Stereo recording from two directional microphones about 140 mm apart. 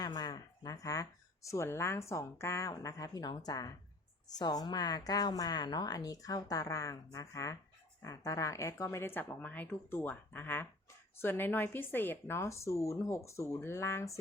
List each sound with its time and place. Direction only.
0.0 s a woman's voice: 30° left (ahead or behind)